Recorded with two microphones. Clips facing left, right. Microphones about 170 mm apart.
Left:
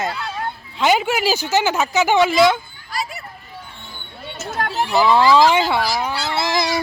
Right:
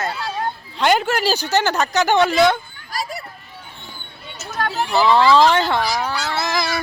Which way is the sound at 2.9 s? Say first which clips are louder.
Even; 40° right (ahead or behind).